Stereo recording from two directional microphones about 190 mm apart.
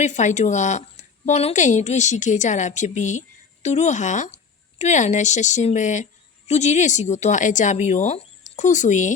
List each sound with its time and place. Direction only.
0.0 s a woman's voice: 40° left (ahead or behind)